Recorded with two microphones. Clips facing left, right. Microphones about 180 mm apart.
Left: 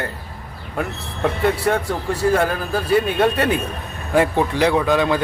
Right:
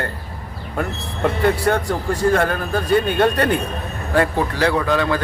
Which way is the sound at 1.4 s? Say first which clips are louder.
Right 1 dB; centre (ahead or behind).